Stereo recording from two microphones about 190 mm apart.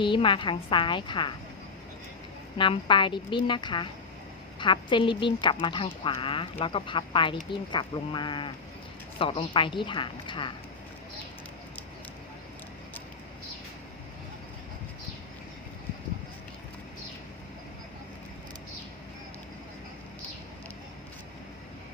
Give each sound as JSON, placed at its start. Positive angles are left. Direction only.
{"t": 0.0, "sound": "a woman's voice", "side_deg": 25}
{"t": 2.6, "sound": "a woman's voice", "side_deg": 25}